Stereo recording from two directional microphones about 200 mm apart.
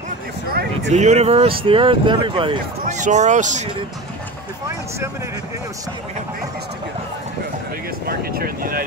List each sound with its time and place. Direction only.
0.8 s speech: 35° right (ahead or behind)
2.8 s speech: 35° right (ahead or behind)
8.1 s speech: 50° right (ahead or behind)